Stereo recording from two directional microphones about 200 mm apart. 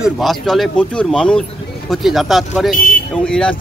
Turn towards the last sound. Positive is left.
turn(degrees=5)  # may be behind; listen again after turning